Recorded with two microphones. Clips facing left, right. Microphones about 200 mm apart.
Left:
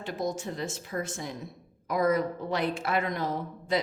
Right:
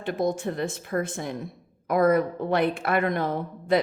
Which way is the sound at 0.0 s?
55° right (ahead or behind).